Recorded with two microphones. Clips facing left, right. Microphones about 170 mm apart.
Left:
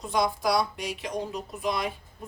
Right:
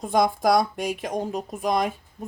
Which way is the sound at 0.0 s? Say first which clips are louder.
Right 5 dB; 50° right (ahead or behind).